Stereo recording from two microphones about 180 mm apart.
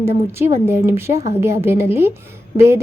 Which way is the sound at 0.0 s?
15° right (ahead or behind).